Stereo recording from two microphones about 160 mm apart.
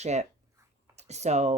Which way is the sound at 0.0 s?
45° right (ahead or behind).